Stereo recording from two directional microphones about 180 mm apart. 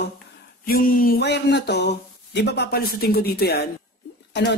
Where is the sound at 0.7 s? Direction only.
50° left (ahead or behind).